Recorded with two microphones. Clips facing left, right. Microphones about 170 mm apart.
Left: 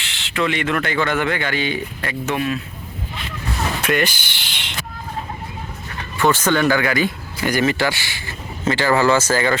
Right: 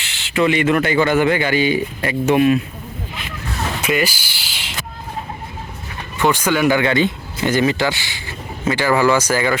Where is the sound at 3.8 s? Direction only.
5° right (ahead or behind).